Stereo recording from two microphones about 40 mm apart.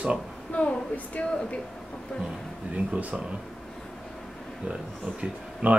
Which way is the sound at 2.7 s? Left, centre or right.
Right.